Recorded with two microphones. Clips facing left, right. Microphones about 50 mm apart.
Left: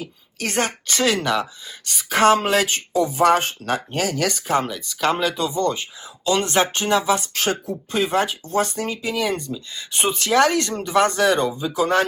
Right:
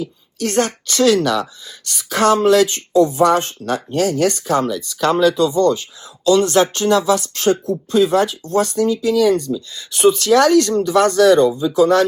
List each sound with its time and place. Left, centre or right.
0.3 s speech: left